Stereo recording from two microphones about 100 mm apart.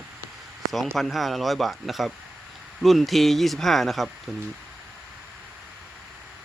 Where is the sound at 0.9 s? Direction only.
Centre (ahead or behind).